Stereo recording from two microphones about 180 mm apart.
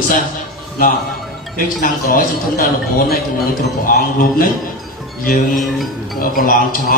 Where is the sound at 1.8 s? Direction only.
50° left (ahead or behind).